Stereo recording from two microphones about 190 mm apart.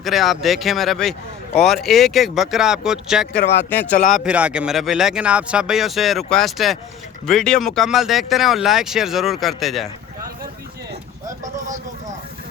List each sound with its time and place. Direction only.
0.0 s speech: centre (ahead or behind)
3.7 s speech: 10° left (ahead or behind)
4.1 s speech: 5° right (ahead or behind)
11.5 s a sound: 40° right (ahead or behind)